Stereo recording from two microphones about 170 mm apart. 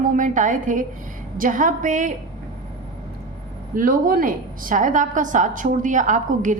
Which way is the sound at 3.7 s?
55° right (ahead or behind).